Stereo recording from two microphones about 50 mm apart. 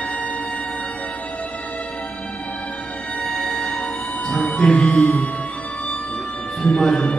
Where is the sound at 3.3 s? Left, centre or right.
Centre.